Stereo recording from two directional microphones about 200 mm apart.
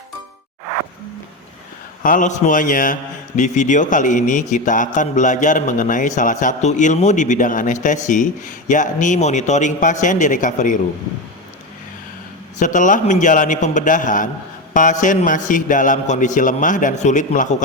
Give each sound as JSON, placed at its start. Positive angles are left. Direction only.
{"t": 2.0, "sound": "a man's voice", "side_deg": 40}
{"t": 12.5, "sound": "a man's voice", "side_deg": 40}